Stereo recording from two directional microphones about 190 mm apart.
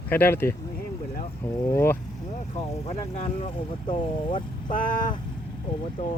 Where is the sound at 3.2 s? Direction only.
30° left (ahead or behind).